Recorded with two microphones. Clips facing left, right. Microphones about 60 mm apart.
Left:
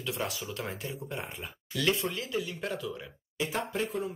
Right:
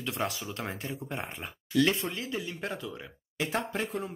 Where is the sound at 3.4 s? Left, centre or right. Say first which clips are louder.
Right 1 dB; right.